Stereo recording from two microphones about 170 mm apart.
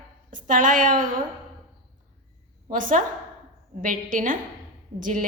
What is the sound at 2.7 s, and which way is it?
A woman's voice, 50° right (ahead or behind).